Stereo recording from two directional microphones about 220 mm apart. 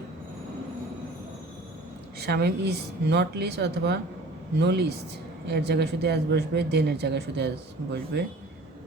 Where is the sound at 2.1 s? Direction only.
45° right (ahead or behind).